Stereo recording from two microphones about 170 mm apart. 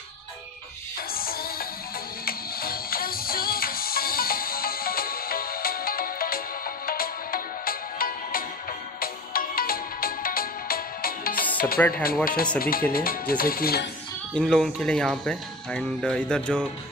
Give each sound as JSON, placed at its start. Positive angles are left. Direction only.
{"t": 1.1, "sound": "music", "side_deg": 60}
{"t": 9.0, "sound": "ringtone", "side_deg": 60}
{"t": 11.5, "sound": "music", "side_deg": 60}
{"t": 14.3, "sound": "speech", "side_deg": 5}